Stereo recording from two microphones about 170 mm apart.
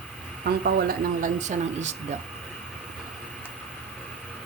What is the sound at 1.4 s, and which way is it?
Speech, 45° right (ahead or behind).